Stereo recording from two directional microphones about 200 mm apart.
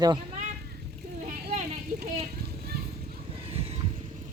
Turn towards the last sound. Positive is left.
turn(degrees=-30)  # may be behind; listen again after turning